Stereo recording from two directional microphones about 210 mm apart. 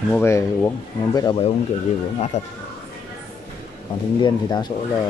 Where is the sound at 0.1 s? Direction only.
10° left (ahead or behind); by 2.5 s 35° left (ahead or behind).